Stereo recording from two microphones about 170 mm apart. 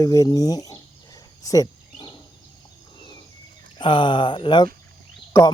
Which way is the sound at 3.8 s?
30° left (ahead or behind).